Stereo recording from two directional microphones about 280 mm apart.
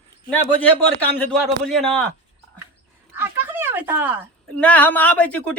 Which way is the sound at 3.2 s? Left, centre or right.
Centre.